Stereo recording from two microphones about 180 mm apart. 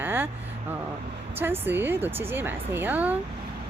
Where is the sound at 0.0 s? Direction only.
10° right (ahead or behind).